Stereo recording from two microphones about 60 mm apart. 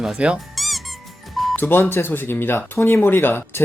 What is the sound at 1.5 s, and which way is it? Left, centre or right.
Speech, left.